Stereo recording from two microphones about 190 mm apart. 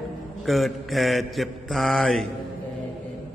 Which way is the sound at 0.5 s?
Centre (ahead or behind).